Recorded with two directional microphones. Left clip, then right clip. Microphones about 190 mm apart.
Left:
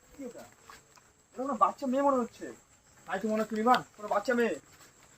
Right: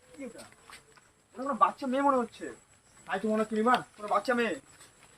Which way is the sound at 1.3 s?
10° left (ahead or behind).